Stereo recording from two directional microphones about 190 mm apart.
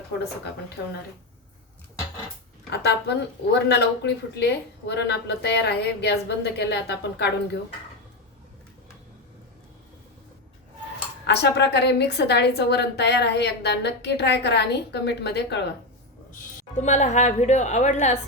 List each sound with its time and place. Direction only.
2.6 s speech: 60° left (ahead or behind)
11.3 s speech: 60° left (ahead or behind)
16.7 s a woman's voice: 40° left (ahead or behind)